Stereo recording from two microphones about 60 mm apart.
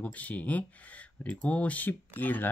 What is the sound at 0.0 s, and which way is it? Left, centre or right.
Speech, left.